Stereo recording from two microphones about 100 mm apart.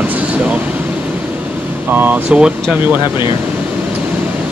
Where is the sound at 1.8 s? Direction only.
15° right (ahead or behind).